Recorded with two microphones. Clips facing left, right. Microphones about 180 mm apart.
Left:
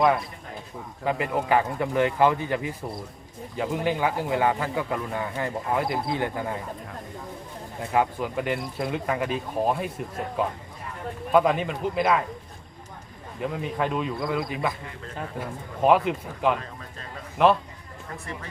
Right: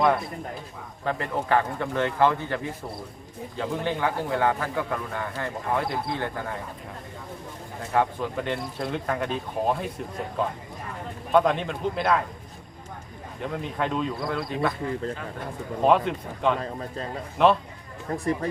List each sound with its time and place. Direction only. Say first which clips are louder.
1.0 s a man's voice: left 2 dB; 10° left (ahead or behind)
3.6 s a man's voice: left 2 dB; 10° left (ahead or behind)
7.9 s speech: even; 10° left (ahead or behind)
11.3 s speech: even; 5° left (ahead or behind)
13.4 s speech: left 2 dB; 5° left (ahead or behind)
15.8 s speech: left 1 dB; 5° left (ahead or behind)
18.1 s speech: right 9 dB; 35° right (ahead or behind)